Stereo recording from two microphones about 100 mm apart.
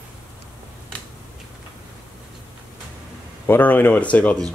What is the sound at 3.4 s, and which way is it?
Speech, 20° left (ahead or behind).